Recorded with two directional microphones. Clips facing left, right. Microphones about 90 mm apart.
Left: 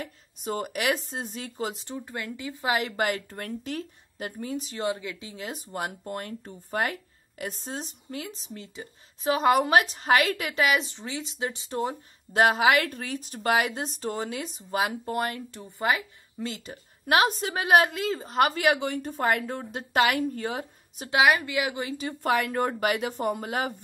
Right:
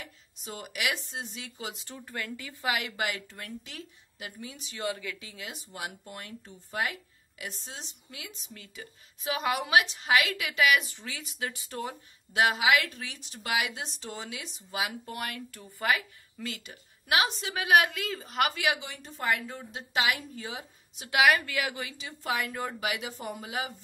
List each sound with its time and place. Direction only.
0.0 s speech: 45° left (ahead or behind)
1.9 s a woman's voice: 20° left (ahead or behind)
2.7 s a woman's voice: 40° left (ahead or behind)
4.8 s a woman's voice: 25° left (ahead or behind)
15.6 s a woman's voice: 25° left (ahead or behind)
17.0 s a woman's voice: 45° left (ahead or behind)
21.1 s a woman's voice: 20° left (ahead or behind)
21.8 s a woman's voice: 45° left (ahead or behind)